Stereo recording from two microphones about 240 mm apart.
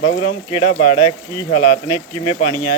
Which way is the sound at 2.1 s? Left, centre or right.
Left.